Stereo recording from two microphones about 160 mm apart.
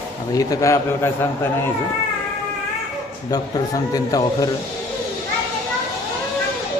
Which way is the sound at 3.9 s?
25° left (ahead or behind).